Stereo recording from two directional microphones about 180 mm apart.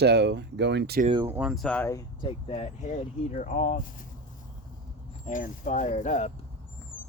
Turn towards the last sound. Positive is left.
turn(degrees=45)  # may be behind; listen again after turning